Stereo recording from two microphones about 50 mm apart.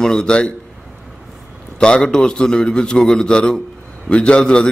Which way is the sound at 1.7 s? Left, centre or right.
Centre.